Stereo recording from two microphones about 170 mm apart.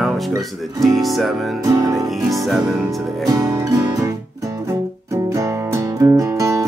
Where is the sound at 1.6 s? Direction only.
20° right (ahead or behind).